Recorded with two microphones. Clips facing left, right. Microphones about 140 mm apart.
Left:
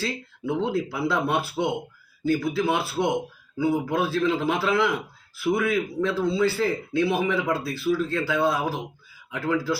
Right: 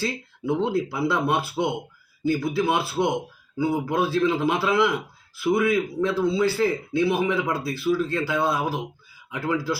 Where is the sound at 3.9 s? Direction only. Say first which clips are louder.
Right 1 dB; 15° right (ahead or behind).